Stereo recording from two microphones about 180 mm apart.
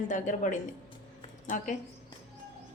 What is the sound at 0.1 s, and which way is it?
Speech, 45° left (ahead or behind).